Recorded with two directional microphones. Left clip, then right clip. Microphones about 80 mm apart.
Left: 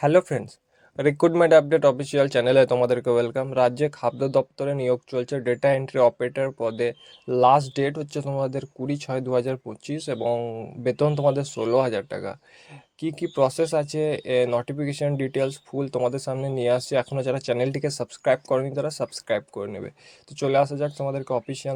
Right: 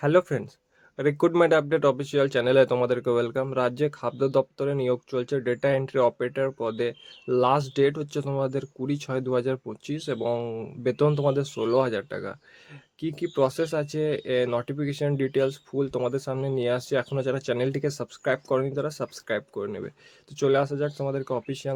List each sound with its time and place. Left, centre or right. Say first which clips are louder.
0.0 s speech: left 3 dB; left
1.0 s speech: left 3 dB; left
1.4 s speech: left 6 dB; left
10.2 s speech: left 4 dB; centre
10.8 s speech: left 2 dB; left